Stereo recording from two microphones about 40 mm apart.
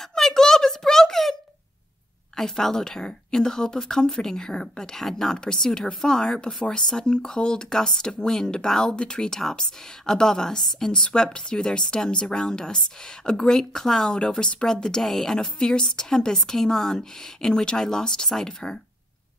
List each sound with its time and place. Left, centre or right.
0.1 s a sound: centre
2.3 s a woman's voice: centre
5.0 s a woman's voice: centre
14.1 s a woman's voice: centre